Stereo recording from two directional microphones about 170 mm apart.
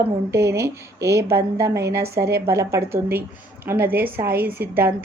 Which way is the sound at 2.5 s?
15° right (ahead or behind).